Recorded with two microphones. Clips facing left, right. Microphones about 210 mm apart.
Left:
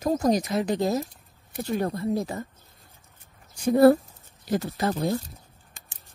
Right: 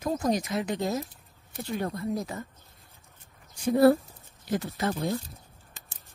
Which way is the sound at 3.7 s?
50° left (ahead or behind).